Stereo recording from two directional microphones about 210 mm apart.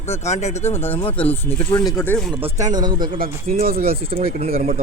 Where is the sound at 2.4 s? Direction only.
35° right (ahead or behind).